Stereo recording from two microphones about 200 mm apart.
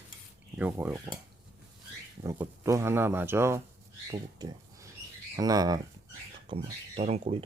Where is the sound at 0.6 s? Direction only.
10° right (ahead or behind).